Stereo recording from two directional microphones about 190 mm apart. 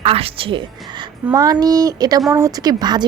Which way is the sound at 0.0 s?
30° right (ahead or behind).